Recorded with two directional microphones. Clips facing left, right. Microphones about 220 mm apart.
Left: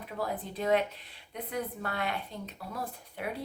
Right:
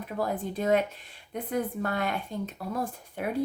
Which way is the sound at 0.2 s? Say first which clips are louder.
Right 4 dB; 45° right (ahead or behind).